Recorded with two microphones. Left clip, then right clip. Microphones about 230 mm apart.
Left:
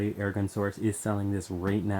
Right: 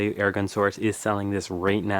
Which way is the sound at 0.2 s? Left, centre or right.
Centre.